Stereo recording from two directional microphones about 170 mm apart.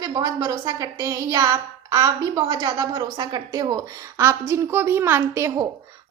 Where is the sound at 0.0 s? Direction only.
20° right (ahead or behind).